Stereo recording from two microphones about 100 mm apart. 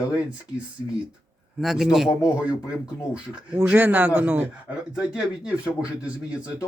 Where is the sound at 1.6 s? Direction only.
5° right (ahead or behind).